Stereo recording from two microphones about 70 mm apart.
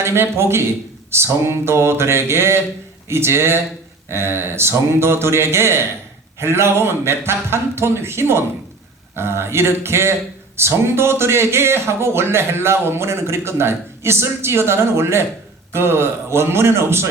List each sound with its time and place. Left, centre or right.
0.0 s speech: right